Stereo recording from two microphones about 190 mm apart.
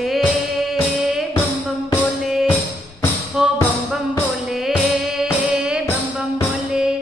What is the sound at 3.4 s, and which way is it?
Music, 5° right (ahead or behind).